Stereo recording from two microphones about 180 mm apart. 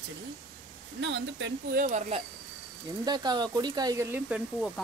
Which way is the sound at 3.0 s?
25° right (ahead or behind).